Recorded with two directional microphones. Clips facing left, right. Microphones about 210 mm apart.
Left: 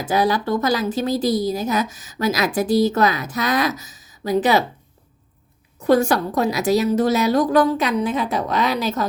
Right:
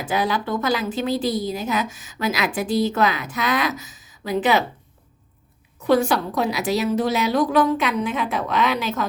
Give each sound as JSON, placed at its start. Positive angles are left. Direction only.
{"t": 0.0, "sound": "a woman's voice", "side_deg": 40}
{"t": 5.8, "sound": "a woman's voice", "side_deg": 45}